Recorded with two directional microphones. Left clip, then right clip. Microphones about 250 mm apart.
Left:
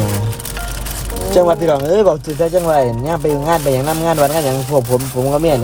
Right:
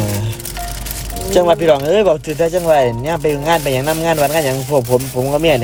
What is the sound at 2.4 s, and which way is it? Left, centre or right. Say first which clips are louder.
A man's voice: right 1 dB; centre.